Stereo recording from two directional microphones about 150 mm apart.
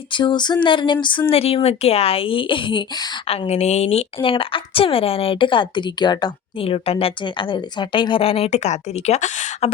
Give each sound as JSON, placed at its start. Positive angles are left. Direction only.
{"t": 0.1, "sound": "a woman's voice", "side_deg": 30}
{"t": 3.2, "sound": "a woman's voice", "side_deg": 45}